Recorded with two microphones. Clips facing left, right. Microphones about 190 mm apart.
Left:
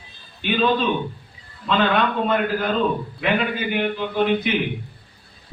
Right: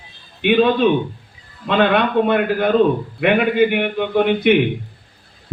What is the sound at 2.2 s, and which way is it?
A man's voice, 70° right (ahead or behind).